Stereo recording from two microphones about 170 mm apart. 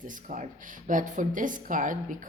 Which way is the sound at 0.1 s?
50° right (ahead or behind).